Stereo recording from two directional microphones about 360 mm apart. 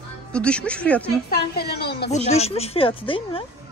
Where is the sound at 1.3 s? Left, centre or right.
Left.